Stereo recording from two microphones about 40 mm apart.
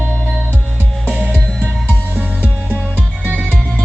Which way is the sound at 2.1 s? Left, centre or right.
Right.